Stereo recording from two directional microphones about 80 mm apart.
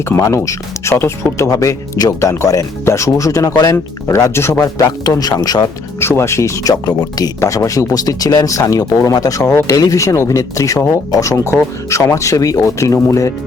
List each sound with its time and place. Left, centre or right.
0.2 s speech: left
4.1 s speech: left
4.6 s speech: left
6.0 s speech: left